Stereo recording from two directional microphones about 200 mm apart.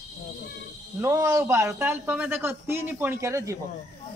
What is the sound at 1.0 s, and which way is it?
A man's voice, 15° right (ahead or behind).